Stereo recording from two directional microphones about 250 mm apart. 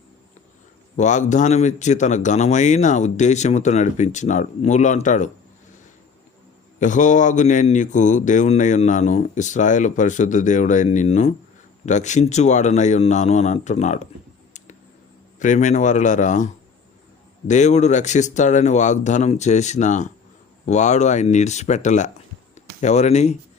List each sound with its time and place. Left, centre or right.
0.9 s speech: left
6.7 s speech: left
15.4 s speech: left
17.5 s speech: left